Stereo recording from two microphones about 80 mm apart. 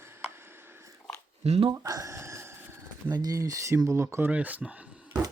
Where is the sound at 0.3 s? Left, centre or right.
Right.